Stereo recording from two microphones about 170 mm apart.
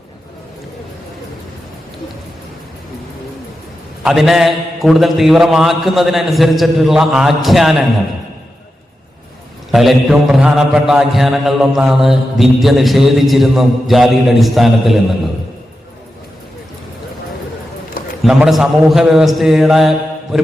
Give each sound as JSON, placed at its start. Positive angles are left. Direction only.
{"t": 4.0, "sound": "mantra", "side_deg": 0}
{"t": 9.7, "sound": "mantra", "side_deg": 0}
{"t": 18.2, "sound": "mantra", "side_deg": -5}